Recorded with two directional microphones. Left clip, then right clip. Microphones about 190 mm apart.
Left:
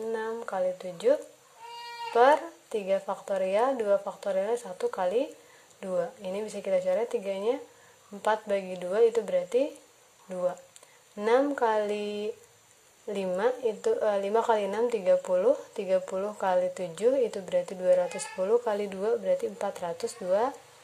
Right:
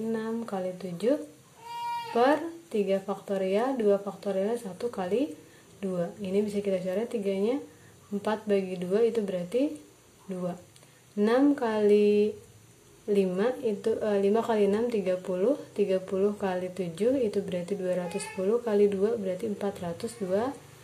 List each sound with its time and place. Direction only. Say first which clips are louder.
0.1 s speech: left 2 dB; 25° left (ahead or behind)
2.1 s speech: left 4 dB; 25° left (ahead or behind)
11.1 s speech: even; 25° left (ahead or behind)
13.1 s speech: right 1 dB; 25° left (ahead or behind)